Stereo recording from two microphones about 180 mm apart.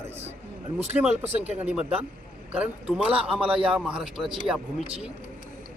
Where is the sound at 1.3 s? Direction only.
35° right (ahead or behind).